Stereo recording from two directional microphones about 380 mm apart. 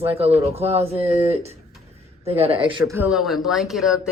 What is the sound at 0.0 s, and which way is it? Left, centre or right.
Speech, centre.